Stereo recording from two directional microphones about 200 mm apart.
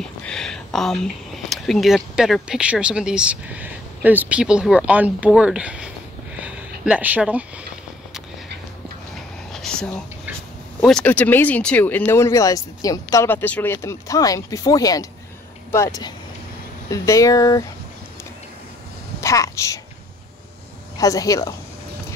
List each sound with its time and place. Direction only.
0.0 s speech: 5° left (ahead or behind)
9.5 s a sound: 5° left (ahead or behind)
10.8 s speech: 5° left (ahead or behind)
19.2 s a woman's voice: 15° left (ahead or behind)
21.0 s speech: 15° left (ahead or behind)